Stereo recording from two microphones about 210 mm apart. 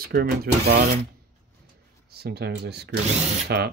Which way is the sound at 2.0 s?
50° right (ahead or behind).